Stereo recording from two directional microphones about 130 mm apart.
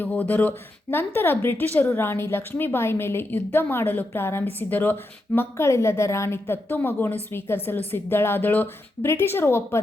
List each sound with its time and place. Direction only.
0.0 s speech: 10° left (ahead or behind)